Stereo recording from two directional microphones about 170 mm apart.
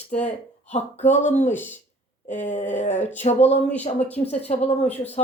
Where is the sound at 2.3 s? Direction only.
45° left (ahead or behind).